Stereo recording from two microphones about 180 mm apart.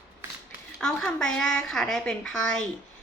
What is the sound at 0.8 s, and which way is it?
A woman's voice, 5° left (ahead or behind).